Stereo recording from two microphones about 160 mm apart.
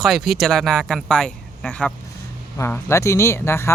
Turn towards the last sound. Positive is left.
turn(degrees=15)  # may be behind; listen again after turning